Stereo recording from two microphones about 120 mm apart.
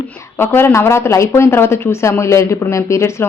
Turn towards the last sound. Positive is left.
turn(degrees=25)  # may be behind; listen again after turning